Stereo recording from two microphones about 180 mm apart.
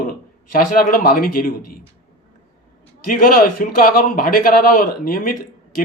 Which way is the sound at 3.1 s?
50° left (ahead or behind).